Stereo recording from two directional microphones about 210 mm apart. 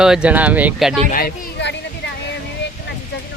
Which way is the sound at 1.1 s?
50° left (ahead or behind).